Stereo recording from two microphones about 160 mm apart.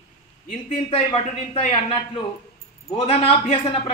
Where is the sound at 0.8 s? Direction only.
35° left (ahead or behind).